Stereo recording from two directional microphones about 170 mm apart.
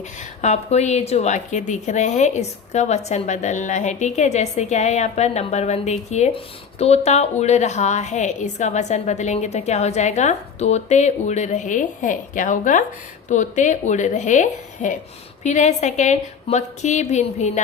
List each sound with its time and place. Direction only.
0.4 s a woman's voice: 40° left (ahead or behind)